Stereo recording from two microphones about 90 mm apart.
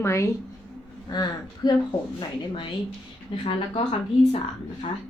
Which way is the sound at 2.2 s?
60° left (ahead or behind).